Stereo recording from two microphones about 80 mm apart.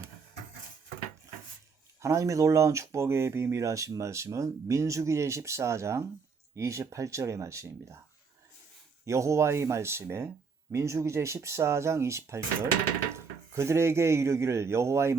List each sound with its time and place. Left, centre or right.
2.0 s speech: right
9.0 s speech: right